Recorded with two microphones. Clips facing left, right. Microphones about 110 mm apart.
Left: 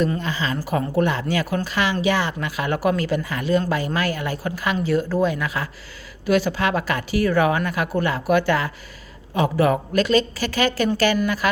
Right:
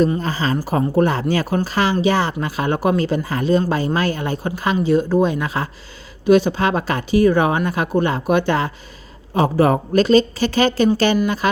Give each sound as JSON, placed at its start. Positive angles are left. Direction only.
{"t": 0.2, "sound": "speech", "side_deg": -40}
{"t": 9.3, "sound": "speech", "side_deg": -35}